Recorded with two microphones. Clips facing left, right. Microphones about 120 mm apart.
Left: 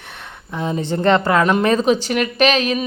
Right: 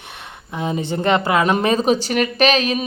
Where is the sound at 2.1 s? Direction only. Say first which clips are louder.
Even; 40° right (ahead or behind).